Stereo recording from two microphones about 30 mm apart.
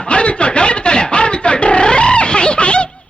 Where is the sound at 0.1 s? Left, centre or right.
Left.